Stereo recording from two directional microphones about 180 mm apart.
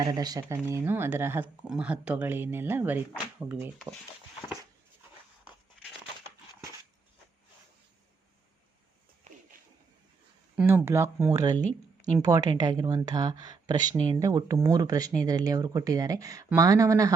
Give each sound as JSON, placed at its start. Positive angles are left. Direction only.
{"t": 0.0, "sound": "speech", "side_deg": -20}
{"t": 9.3, "sound": "a sound", "side_deg": -40}
{"t": 10.5, "sound": "speech", "side_deg": -10}